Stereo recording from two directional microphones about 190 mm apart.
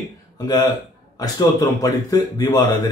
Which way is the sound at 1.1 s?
20° left (ahead or behind).